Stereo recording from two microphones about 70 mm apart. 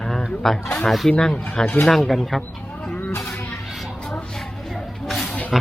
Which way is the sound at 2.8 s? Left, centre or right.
Left.